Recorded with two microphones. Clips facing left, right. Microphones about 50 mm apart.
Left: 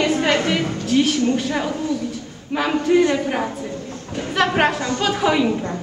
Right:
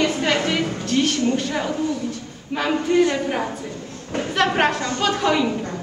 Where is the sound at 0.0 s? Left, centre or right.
Centre.